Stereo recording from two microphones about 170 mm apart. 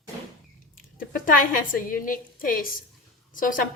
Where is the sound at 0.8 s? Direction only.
55° left (ahead or behind).